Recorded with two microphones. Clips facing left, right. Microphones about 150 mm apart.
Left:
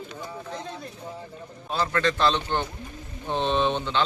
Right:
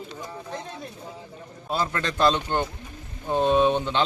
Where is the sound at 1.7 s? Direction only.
10° right (ahead or behind).